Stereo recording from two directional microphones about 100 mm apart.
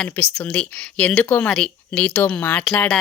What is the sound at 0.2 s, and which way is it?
A woman's voice, 20° left (ahead or behind).